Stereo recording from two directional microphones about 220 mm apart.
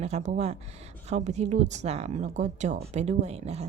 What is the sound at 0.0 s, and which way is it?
A woman's voice, 30° right (ahead or behind).